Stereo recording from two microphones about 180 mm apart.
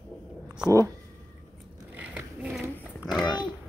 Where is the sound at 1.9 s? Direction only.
5° right (ahead or behind).